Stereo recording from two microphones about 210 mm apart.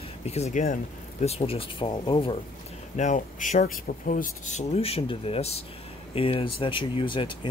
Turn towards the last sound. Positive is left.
turn(degrees=25)  # may be behind; listen again after turning